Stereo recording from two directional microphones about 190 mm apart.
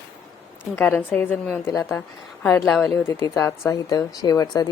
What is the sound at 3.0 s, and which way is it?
Speech, 15° left (ahead or behind).